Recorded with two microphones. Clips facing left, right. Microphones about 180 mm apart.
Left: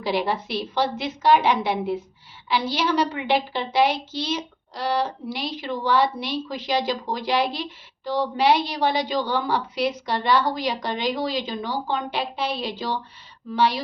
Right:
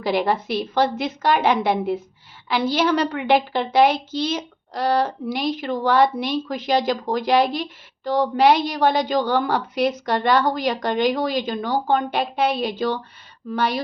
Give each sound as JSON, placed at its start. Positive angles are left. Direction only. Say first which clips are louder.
{"t": 0.0, "sound": "a woman's voice", "louder": "right 3 dB", "side_deg": -50}